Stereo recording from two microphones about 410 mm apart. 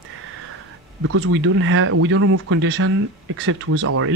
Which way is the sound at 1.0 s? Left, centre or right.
Right.